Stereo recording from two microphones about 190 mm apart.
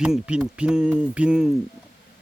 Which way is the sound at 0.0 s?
5° right (ahead or behind).